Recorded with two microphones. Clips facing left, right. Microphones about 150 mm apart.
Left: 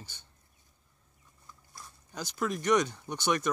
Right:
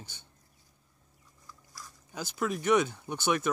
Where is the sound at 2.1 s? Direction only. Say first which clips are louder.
Right 1 dB; 10° right (ahead or behind).